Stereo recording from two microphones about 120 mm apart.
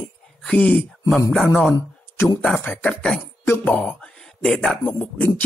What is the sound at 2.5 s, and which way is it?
Speech, 10° left (ahead or behind).